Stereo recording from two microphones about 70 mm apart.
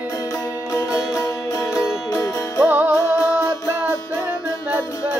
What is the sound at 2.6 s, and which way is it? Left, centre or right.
Music, right.